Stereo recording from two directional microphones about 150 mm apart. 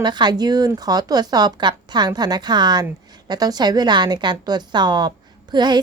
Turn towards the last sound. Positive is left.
turn(degrees=-30)  # may be behind; listen again after turning